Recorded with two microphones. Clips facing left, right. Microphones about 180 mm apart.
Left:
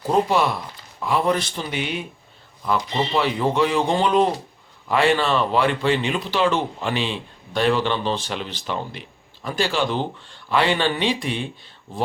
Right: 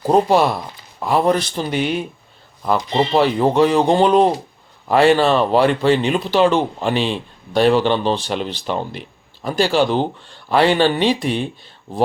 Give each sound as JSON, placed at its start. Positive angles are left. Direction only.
{"t": 0.0, "sound": "speech", "side_deg": -40}